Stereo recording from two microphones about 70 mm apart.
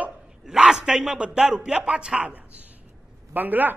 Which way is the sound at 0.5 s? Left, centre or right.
Centre.